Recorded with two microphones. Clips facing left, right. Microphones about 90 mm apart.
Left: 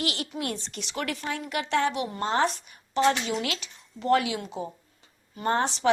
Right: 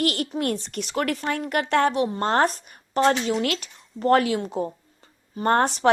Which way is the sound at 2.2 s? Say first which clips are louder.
Right 2 dB; 55° right (ahead or behind).